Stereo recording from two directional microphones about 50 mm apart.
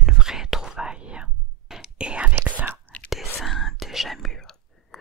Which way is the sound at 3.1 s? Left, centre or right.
Centre.